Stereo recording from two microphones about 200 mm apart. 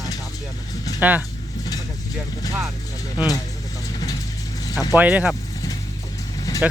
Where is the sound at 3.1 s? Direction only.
20° left (ahead or behind).